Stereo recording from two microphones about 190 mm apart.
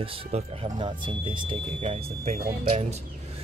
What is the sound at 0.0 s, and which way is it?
Speech, 30° right (ahead or behind).